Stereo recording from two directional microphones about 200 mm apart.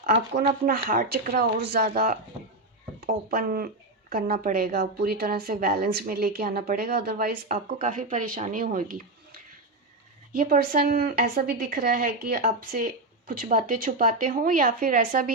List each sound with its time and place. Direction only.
0.6 s a woman's voice: 45° right (ahead or behind)
10.3 s a woman's voice: 50° right (ahead or behind)